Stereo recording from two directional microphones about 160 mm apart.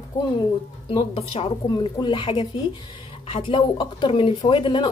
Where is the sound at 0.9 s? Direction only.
35° left (ahead or behind).